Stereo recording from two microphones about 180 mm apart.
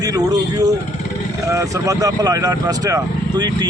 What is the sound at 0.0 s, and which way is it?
A man's voice, 20° right (ahead or behind).